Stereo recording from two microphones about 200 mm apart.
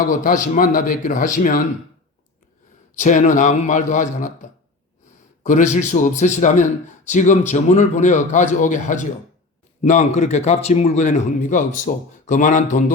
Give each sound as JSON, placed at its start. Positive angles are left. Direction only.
{"t": 0.1, "sound": "a man's voice", "side_deg": 40}
{"t": 3.0, "sound": "a man's voice", "side_deg": 40}
{"t": 5.4, "sound": "a man's voice", "side_deg": 40}